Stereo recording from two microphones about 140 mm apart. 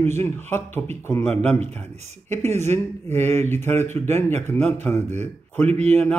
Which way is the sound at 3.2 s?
15° left (ahead or behind).